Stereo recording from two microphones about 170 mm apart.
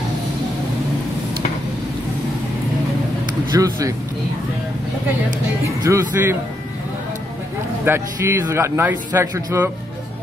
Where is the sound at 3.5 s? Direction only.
20° right (ahead or behind).